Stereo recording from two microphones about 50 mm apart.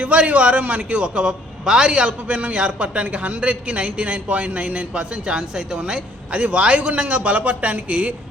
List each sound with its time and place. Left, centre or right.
0.0 s a man's voice: right